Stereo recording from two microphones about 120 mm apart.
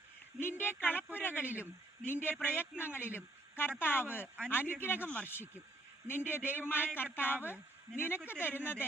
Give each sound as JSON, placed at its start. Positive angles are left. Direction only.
{"t": 0.3, "sound": "a woman's voice", "side_deg": 20}